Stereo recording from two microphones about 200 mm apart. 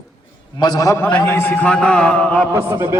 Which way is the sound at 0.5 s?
20° left (ahead or behind).